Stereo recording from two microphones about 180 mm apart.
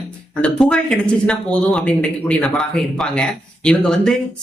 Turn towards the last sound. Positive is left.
turn(degrees=5)  # may be behind; listen again after turning